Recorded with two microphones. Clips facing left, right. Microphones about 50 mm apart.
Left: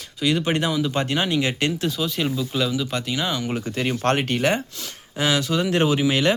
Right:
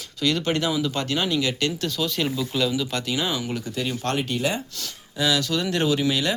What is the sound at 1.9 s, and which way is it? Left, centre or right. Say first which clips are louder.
Speech: left 1 dB; centre.